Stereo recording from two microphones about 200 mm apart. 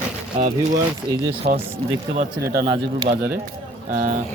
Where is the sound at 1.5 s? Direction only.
45° right (ahead or behind).